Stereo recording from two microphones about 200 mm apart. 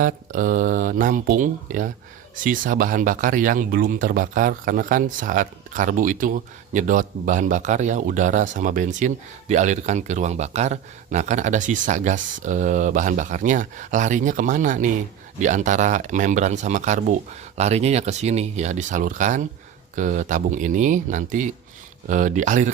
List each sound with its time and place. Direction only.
0.0 s speech: 45° right (ahead or behind)